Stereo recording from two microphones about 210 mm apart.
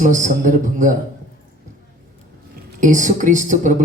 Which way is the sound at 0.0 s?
35° right (ahead or behind).